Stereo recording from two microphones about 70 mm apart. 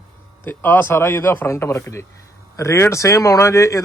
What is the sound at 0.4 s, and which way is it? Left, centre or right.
Speech, left.